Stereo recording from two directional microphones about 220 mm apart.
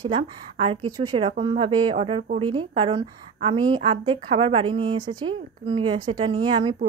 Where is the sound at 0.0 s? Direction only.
25° right (ahead or behind).